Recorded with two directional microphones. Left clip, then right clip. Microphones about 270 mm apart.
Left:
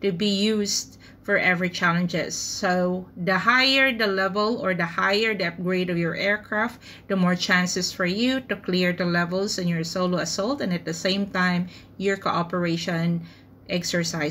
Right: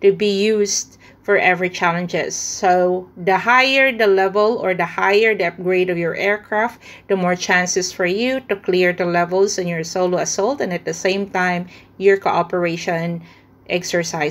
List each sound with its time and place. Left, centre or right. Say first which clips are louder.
0.0 s speech: right 10 dB; centre
0.5 s speech: right 8 dB; right
1.2 s a woman's voice: right 6 dB; centre
3.3 s a woman's voice: right 6 dB; centre